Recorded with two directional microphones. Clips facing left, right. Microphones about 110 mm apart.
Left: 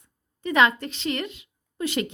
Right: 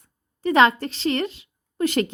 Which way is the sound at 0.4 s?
35° right (ahead or behind).